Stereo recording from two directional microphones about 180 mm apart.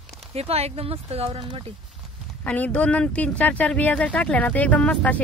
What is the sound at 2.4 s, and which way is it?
Speech, 10° left (ahead or behind).